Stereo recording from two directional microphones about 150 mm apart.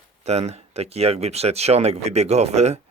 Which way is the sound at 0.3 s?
45° right (ahead or behind).